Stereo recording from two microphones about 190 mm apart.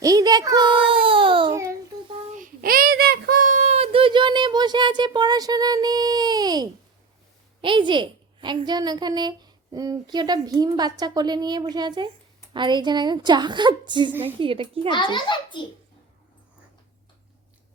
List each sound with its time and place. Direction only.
0.0 s baby cry: 20° right (ahead or behind)
2.3 s child singing: 45° right (ahead or behind); by 6.7 s 20° right (ahead or behind)
7.6 s a woman's voice: 25° right (ahead or behind)
14.8 s a child's voice: 25° left (ahead or behind)